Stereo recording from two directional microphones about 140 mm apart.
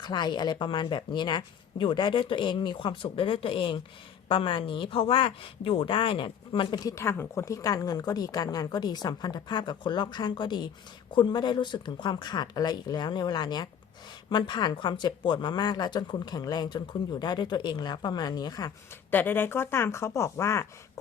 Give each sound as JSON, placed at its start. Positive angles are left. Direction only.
{"t": 0.0, "sound": "speech", "side_deg": 30}
{"t": 19.1, "sound": "speech", "side_deg": 15}